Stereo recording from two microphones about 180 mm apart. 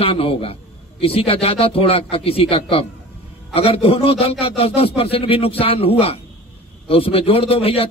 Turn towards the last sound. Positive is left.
turn(degrees=35)  # may be behind; listen again after turning